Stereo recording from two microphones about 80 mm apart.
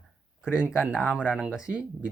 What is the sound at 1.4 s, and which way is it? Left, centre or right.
Speech, centre.